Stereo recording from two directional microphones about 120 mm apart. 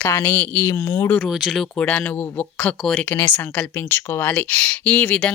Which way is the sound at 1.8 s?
15° left (ahead or behind).